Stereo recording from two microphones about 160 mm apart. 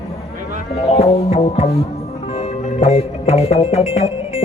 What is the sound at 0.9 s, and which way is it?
Music, 40° left (ahead or behind).